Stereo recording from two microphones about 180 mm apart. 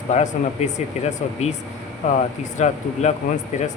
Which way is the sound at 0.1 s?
40° left (ahead or behind).